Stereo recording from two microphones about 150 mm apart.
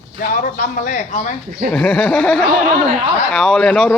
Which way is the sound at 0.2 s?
70° left (ahead or behind).